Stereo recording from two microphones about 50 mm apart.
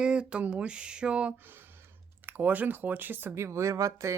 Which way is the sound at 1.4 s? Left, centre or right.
Right.